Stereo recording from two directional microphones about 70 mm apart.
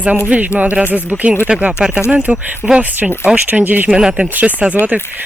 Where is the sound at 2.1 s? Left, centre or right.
Right.